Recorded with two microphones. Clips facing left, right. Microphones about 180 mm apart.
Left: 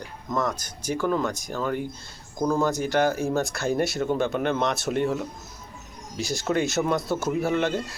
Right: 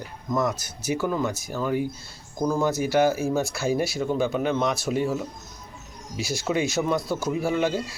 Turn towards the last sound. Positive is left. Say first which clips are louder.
# even
turn(degrees=0)  # may be behind; listen again after turning